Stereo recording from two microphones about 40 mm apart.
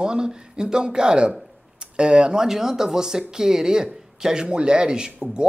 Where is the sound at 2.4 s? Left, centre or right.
Centre.